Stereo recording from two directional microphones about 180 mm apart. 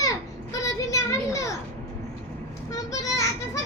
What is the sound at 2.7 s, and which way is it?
Speech, 20° left (ahead or behind).